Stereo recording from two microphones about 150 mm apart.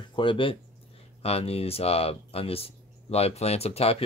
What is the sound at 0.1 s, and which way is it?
Speech, 35° left (ahead or behind).